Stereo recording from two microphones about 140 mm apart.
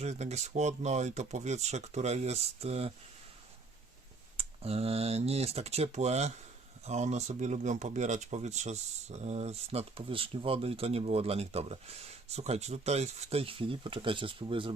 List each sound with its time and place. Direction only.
0.0 s speech: 50° right (ahead or behind)
4.4 s speech: 45° right (ahead or behind)